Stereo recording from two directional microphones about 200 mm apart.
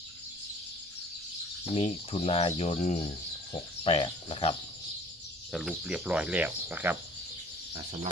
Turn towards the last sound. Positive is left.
turn(degrees=-10)  # may be behind; listen again after turning